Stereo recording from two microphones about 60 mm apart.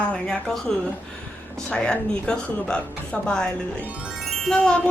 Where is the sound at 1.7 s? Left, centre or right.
Centre.